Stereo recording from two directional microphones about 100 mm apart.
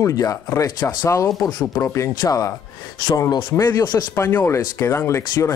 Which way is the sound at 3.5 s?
30° left (ahead or behind).